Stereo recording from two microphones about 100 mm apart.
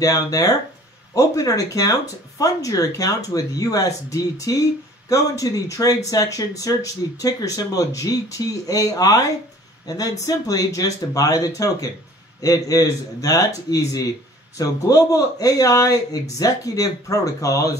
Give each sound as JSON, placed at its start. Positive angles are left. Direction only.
{"t": 0.0, "sound": "speech", "side_deg": 35}